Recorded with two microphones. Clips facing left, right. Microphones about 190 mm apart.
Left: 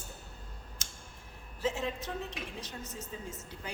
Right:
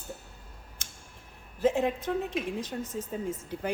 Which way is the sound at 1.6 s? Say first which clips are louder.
Right 8 dB; 55° right (ahead or behind).